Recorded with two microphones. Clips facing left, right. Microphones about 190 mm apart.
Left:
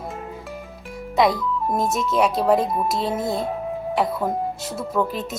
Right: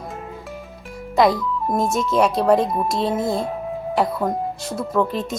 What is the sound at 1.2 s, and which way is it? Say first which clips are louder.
Speech: right 2 dB; centre (ahead or behind).